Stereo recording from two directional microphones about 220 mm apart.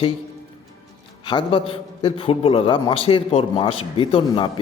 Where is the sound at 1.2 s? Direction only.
20° left (ahead or behind).